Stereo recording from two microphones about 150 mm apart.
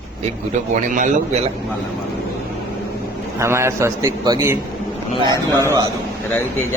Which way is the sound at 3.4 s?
20° right (ahead or behind).